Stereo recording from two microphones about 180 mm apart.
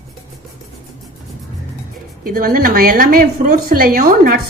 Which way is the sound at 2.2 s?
55° right (ahead or behind).